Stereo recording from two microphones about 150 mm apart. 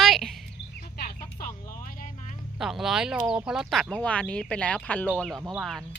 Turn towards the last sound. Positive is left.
turn(degrees=0)  # may be behind; listen again after turning